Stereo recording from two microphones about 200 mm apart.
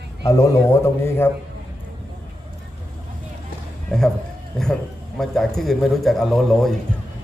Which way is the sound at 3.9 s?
5° left (ahead or behind).